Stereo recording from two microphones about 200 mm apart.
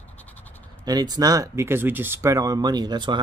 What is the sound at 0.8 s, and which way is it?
Speech, 20° right (ahead or behind).